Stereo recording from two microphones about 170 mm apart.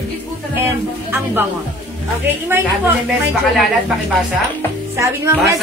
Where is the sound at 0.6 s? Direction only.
10° right (ahead or behind).